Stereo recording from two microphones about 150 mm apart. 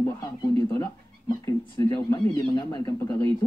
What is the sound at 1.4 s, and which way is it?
Speech, 20° left (ahead or behind).